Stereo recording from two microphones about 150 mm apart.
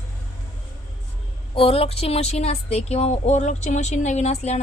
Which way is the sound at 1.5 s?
40° left (ahead or behind).